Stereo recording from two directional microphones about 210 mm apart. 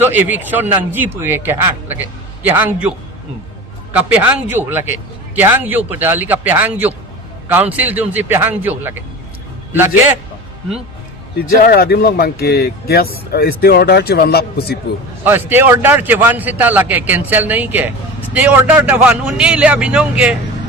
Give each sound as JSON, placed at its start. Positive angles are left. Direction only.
{"t": 0.0, "sound": "a man's voice", "side_deg": -10}
{"t": 3.9, "sound": "a man's voice", "side_deg": -10}
{"t": 11.6, "sound": "speech", "side_deg": 45}
{"t": 15.2, "sound": "a man's voice", "side_deg": -10}